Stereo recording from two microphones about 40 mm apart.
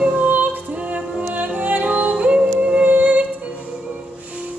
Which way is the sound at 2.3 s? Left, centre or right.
Right.